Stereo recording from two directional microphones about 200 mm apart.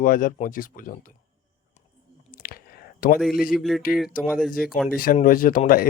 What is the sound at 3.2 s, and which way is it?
Speech, centre (ahead or behind).